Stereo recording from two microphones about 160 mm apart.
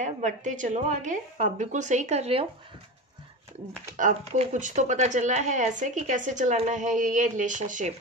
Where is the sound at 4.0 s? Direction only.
50° right (ahead or behind).